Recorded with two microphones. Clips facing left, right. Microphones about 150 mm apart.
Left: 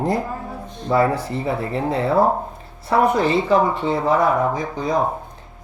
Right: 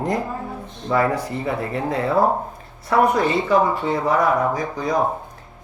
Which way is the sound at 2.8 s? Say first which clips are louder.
Even; 25° left (ahead or behind).